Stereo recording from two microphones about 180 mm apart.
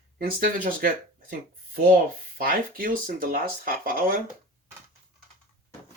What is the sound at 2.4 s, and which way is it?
Speech, 50° right (ahead or behind).